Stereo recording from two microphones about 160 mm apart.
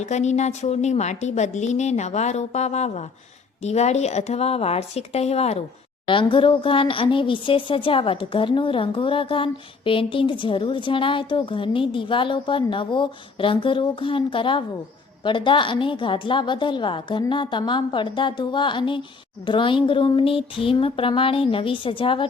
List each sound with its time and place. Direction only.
0.0 s a woman's voice: 45° left (ahead or behind)